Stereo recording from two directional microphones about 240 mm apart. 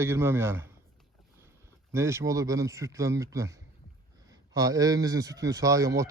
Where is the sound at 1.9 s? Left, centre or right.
Centre.